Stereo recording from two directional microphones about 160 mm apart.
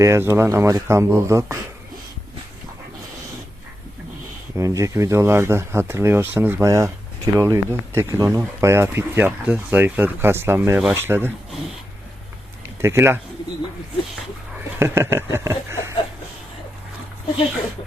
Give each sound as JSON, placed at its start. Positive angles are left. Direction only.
{"t": 0.0, "sound": "speech", "side_deg": -15}
{"t": 4.5, "sound": "speech", "side_deg": -20}
{"t": 12.8, "sound": "speech", "side_deg": -15}
{"t": 14.6, "sound": "a sound", "side_deg": -15}